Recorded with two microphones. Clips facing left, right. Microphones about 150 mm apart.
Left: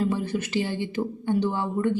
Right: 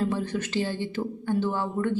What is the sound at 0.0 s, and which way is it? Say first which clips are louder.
A woman's voice: left 2 dB; 10° left (ahead or behind).